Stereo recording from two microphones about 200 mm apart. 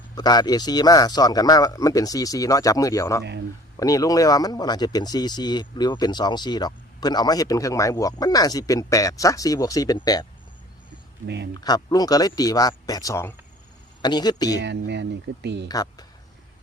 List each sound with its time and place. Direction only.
0.2 s speech: 20° left (ahead or behind)
11.6 s speech: 20° left (ahead or behind)
14.6 s speech: 60° right (ahead or behind)
15.7 s speech: 20° left (ahead or behind)